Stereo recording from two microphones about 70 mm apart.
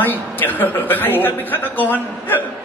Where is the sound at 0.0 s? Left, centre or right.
Left.